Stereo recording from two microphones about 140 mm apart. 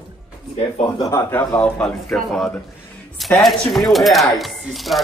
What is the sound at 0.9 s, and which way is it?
Speech, 20° left (ahead or behind).